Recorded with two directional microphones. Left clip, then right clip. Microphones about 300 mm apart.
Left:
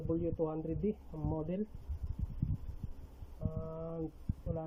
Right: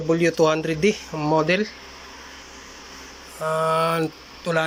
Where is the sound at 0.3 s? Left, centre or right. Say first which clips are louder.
Right 18 dB; right.